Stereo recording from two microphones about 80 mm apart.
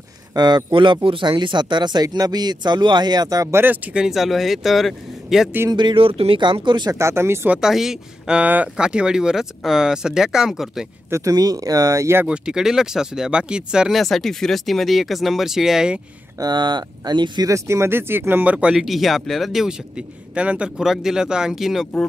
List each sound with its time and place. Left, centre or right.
0.3 s speech: right
2.0 s speech: right
3.5 s speech: right; by 5.5 s centre
5.7 s speech: right
6.9 s speech: right
7.6 s speech: centre
11.1 s speech: right
12.3 s speech: centre
14.0 s speech: centre
16.3 s speech: right
17.5 s speech: right; by 18.8 s centre
18.8 s speech: centre